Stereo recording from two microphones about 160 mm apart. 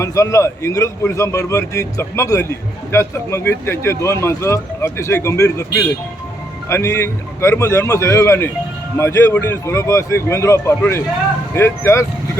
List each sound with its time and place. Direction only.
0.0 s a man's voice: 20° left (ahead or behind)
6.7 s a man's voice: 20° left (ahead or behind)